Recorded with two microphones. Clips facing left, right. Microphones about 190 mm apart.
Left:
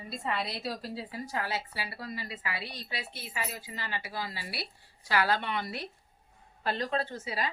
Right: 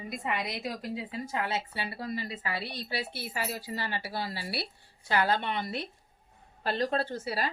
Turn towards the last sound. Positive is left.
turn(degrees=-35)  # may be behind; listen again after turning